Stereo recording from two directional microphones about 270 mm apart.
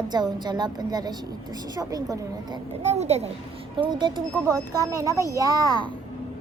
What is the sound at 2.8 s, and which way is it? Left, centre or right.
A woman's voice, right.